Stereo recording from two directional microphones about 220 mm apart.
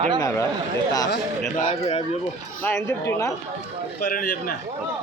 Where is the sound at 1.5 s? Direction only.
30° left (ahead or behind).